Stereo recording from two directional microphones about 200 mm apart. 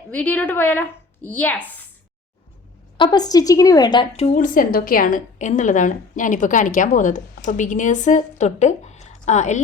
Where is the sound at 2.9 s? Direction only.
20° left (ahead or behind).